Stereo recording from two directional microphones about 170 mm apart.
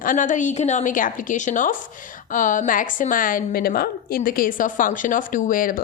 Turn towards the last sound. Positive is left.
turn(degrees=55)  # may be behind; listen again after turning